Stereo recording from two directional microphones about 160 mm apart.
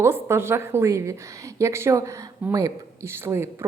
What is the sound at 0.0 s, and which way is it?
A woman's voice, 15° right (ahead or behind).